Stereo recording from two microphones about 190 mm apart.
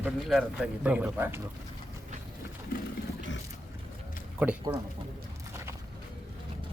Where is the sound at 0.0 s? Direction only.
5° right (ahead or behind).